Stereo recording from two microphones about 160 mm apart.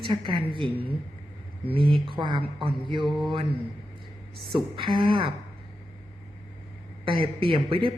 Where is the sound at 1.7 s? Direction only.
35° right (ahead or behind).